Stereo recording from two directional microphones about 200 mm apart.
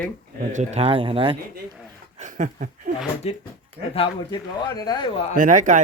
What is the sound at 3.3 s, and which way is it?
A man's voice, 30° left (ahead or behind).